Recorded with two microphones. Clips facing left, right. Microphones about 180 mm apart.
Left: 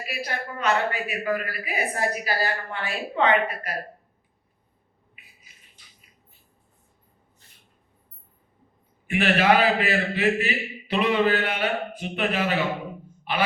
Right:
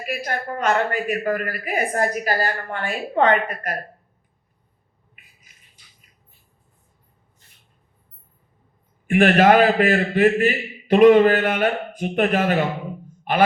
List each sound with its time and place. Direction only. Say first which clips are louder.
0.0 s a woman's voice: right 5 dB; 50° right (ahead or behind)
9.0 s a woman's voice: right 6 dB; 50° right (ahead or behind)